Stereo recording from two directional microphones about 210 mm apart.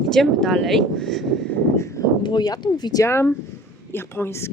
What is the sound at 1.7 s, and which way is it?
Speech, 15° left (ahead or behind).